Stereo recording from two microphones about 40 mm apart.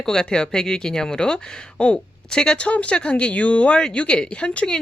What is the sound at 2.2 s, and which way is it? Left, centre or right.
Speech, centre.